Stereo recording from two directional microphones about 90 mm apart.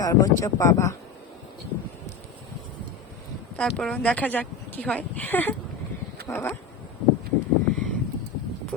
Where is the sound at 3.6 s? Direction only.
10° left (ahead or behind).